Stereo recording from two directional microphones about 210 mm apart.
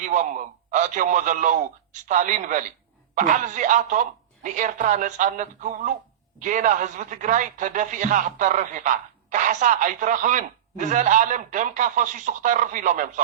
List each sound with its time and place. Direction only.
0.0 s a man's voice: 35° right (ahead or behind)